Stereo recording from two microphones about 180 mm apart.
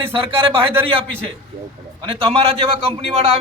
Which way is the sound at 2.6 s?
35° right (ahead or behind).